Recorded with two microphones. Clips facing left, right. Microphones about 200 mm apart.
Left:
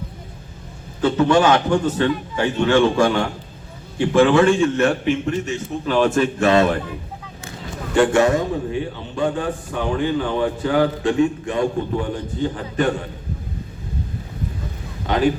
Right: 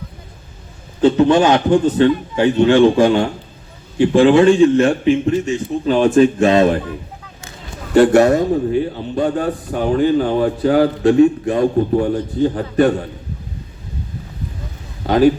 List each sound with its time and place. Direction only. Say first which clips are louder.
1.3 s a man's voice: right 3 dB; 20° right (ahead or behind)
7.9 s speech: right 5 dB; 40° right (ahead or behind)
15.0 s speech: right 6 dB; 40° right (ahead or behind)